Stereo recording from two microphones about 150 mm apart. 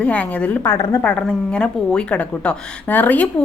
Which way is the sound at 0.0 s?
10° left (ahead or behind).